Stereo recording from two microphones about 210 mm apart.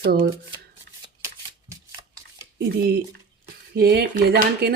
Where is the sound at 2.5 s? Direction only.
50° right (ahead or behind).